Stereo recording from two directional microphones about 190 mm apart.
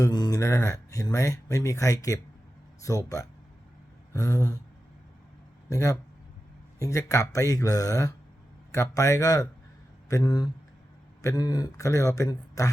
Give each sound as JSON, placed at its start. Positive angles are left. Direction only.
{"t": 0.0, "sound": "speech", "side_deg": 20}
{"t": 5.6, "sound": "speech", "side_deg": 15}